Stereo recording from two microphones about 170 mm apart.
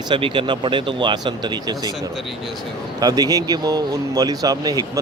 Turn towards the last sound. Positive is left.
turn(degrees=-20)  # may be behind; listen again after turning